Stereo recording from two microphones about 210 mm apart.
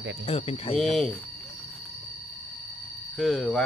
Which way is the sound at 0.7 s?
Centre (ahead or behind).